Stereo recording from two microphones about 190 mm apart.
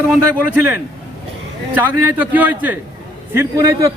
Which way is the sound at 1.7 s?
10° right (ahead or behind).